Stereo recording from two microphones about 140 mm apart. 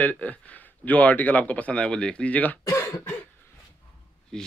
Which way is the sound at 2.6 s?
20° left (ahead or behind).